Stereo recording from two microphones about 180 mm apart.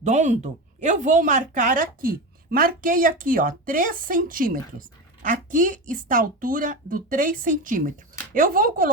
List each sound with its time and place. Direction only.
0.0 s speech: 40° right (ahead or behind)